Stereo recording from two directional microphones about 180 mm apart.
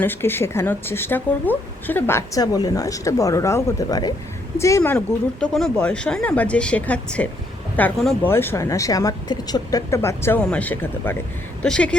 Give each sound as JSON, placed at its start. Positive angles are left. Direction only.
{"t": 0.0, "sound": "speech", "side_deg": 10}